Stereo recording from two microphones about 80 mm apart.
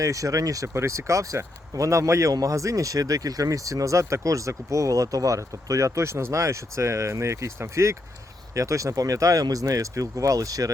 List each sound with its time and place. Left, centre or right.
0.0 s speech: right